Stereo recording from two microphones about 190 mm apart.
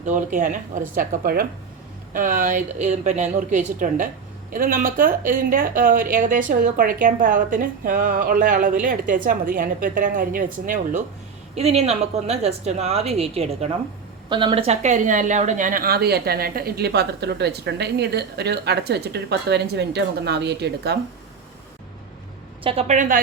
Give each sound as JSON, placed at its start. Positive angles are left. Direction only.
{"t": 0.0, "sound": "a woman's voice", "side_deg": -40}
{"t": 11.5, "sound": "a woman's voice", "side_deg": -35}
{"t": 22.6, "sound": "a woman's voice", "side_deg": -30}